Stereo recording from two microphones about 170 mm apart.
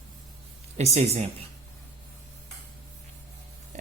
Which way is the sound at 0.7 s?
40° right (ahead or behind).